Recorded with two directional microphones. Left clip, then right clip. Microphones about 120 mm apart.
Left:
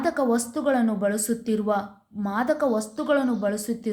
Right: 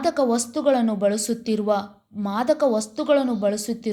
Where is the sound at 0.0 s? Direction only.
15° right (ahead or behind).